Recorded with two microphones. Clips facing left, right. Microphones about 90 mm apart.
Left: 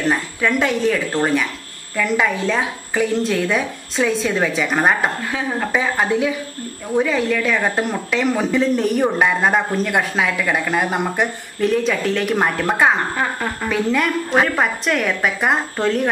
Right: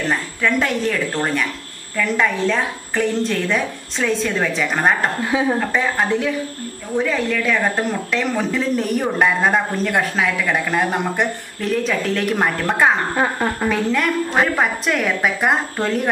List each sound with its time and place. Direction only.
0.1 s speech: 5° left (ahead or behind)
13.1 s a woman's voice: 15° right (ahead or behind)
13.7 s speech: centre (ahead or behind)